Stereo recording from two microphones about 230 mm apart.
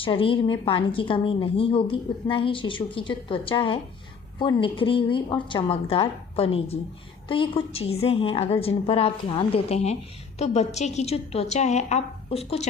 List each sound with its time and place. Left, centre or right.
0.0 s a woman's voice: left